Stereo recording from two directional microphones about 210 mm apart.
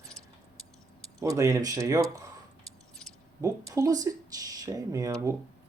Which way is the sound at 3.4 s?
15° right (ahead or behind).